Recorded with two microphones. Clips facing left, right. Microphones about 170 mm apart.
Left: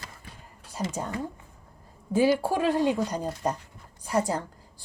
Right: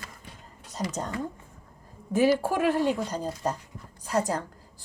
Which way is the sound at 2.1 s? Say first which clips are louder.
Even; 10° left (ahead or behind).